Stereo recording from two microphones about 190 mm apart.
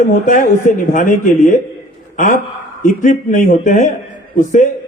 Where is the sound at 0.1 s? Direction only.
40° left (ahead or behind).